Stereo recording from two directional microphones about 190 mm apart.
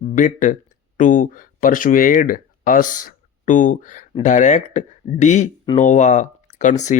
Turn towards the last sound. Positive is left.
turn(degrees=40)  # may be behind; listen again after turning